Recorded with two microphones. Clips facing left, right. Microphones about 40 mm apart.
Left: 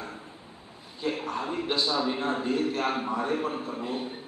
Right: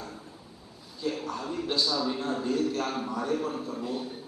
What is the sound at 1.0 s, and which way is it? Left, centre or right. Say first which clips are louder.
A man's voice: left 2 dB; left.